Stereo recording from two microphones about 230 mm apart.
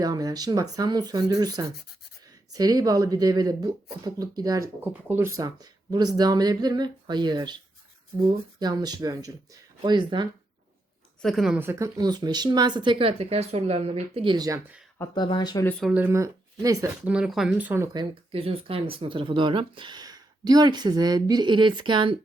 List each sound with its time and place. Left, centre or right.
0.0 s speech: centre
8.5 s speech: centre
11.2 s speech: centre
14.9 s speech: centre
15.8 s speech: centre
17.2 s speech: centre
17.9 s speech: right